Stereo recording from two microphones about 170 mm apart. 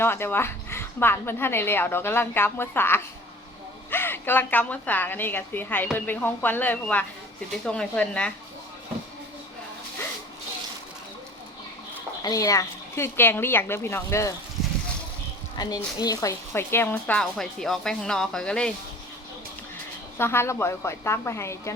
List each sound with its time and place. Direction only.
0.0 s a woman's voice: 15° left (ahead or behind)
12.2 s speech: 20° left (ahead or behind)
15.5 s a woman's voice: 25° left (ahead or behind); by 18.7 s 5° left (ahead or behind)
20.1 s speech: 15° left (ahead or behind)